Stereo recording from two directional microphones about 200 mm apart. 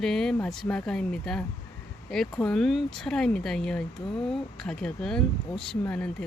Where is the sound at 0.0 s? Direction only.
Centre (ahead or behind).